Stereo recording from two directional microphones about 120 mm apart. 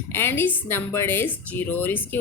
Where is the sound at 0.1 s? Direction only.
20° left (ahead or behind).